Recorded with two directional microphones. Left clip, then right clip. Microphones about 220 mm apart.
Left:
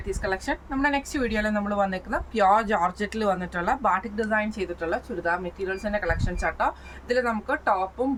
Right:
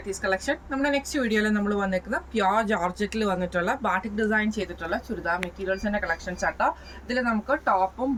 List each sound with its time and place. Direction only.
0.1 s a woman's voice: 15° left (ahead or behind)